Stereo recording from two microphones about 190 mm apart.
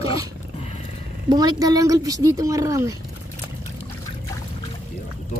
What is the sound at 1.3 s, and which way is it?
Speech, 20° right (ahead or behind).